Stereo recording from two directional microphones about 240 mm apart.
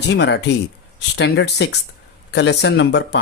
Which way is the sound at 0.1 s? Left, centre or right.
Left.